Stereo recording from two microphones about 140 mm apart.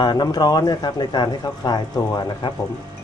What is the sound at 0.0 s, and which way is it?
Speech, 30° left (ahead or behind).